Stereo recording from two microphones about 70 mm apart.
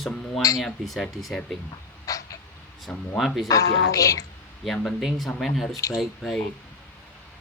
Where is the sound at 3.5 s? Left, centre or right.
Left.